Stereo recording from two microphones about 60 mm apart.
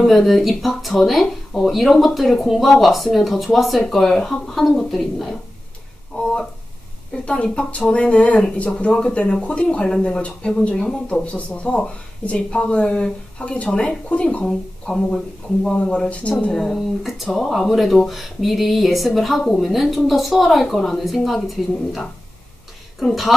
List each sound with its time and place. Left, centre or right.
0.0 s speech: centre
6.1 s speech: centre
16.5 s speech: centre